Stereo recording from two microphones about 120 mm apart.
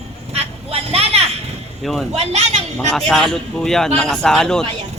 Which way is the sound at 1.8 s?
Centre (ahead or behind).